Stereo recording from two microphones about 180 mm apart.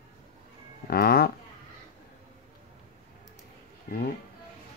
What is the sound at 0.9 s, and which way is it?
Speech, 60° left (ahead or behind).